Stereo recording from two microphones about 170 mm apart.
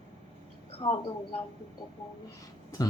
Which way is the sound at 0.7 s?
35° left (ahead or behind).